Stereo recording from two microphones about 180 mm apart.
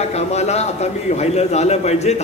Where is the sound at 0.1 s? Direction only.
35° left (ahead or behind).